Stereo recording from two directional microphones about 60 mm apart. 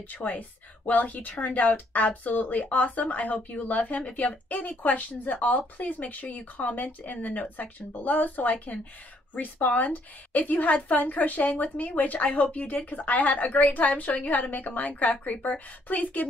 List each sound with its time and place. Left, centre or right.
0.1 s speech: left